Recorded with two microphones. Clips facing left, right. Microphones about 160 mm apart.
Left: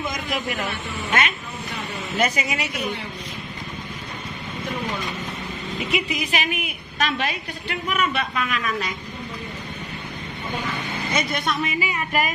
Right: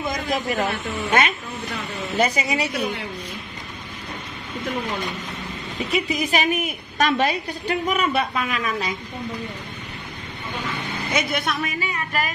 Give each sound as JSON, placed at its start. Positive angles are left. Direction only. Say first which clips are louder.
{"t": 0.1, "sound": "a woman's voice", "louder": "right 3 dB", "side_deg": -40}
{"t": 6.1, "sound": "a woman's voice", "louder": "right 4 dB", "side_deg": -40}
{"t": 11.1, "sound": "a man's voice", "louder": "even", "side_deg": -5}
{"t": 11.8, "sound": "music", "louder": "left 2 dB", "side_deg": 10}